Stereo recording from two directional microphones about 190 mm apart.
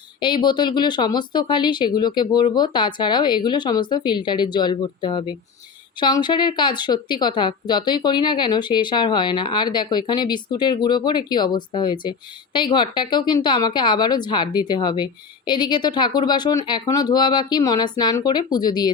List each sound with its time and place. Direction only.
0.2 s a woman's voice: 25° left (ahead or behind)